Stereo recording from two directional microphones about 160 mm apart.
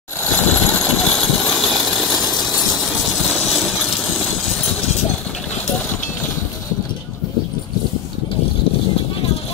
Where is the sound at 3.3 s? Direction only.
Centre (ahead or behind).